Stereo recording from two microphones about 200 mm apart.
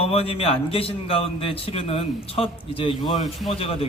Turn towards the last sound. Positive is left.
turn(degrees=30)  # may be behind; listen again after turning